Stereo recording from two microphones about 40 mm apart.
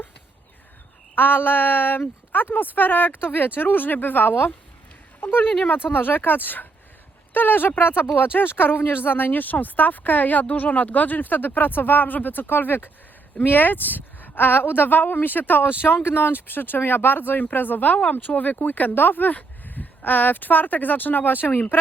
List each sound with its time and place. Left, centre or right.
1.1 s a woman's voice: left
16.0 s a woman's voice: left